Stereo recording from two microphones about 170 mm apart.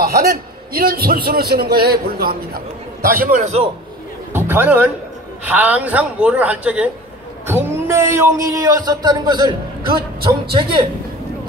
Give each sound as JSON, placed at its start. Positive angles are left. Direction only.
{"t": 0.0, "sound": "a man's voice", "side_deg": -60}
{"t": 4.3, "sound": "a woman's voice", "side_deg": -10}